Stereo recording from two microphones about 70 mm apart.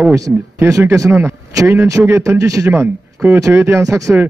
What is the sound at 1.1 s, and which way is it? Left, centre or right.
Speech, right.